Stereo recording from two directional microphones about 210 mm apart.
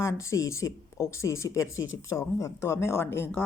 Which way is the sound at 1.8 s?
65° left (ahead or behind).